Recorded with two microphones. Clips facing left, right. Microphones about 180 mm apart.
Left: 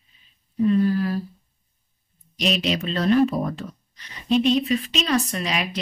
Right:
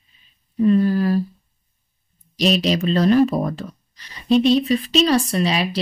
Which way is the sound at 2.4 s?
35° right (ahead or behind).